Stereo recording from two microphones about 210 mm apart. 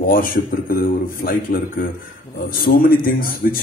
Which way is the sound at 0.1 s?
40° left (ahead or behind).